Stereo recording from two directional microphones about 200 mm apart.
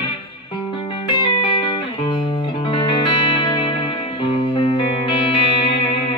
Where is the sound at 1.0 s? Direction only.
25° left (ahead or behind).